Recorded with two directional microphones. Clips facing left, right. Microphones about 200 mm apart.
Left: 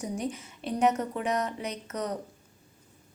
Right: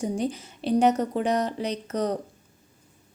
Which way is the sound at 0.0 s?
30° right (ahead or behind).